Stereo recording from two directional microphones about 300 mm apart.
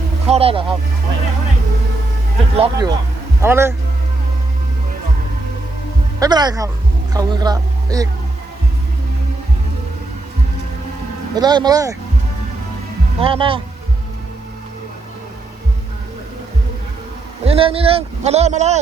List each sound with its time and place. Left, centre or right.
0.3 s a man's voice: centre
2.6 s speech: centre
6.1 s speech: centre
11.3 s speech: centre
13.1 s speech: centre
17.4 s a man's voice: centre